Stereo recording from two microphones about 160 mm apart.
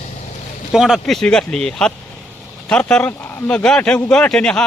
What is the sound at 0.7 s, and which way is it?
A man's voice, 5° right (ahead or behind).